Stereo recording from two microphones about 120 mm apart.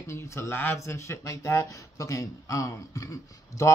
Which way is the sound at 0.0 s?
25° left (ahead or behind).